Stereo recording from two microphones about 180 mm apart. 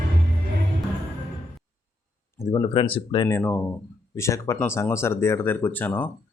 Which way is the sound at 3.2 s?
15° left (ahead or behind).